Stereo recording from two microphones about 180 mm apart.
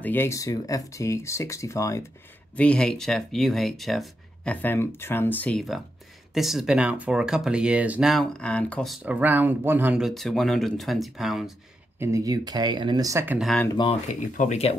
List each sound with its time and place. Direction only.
0.0 s speech: 10° left (ahead or behind)
12.0 s speech: 20° right (ahead or behind)
13.7 s speech: 25° left (ahead or behind)
14.0 s speech: 45° left (ahead or behind)